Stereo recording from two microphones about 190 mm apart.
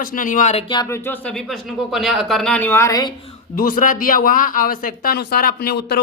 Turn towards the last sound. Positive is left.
turn(degrees=60)  # may be behind; listen again after turning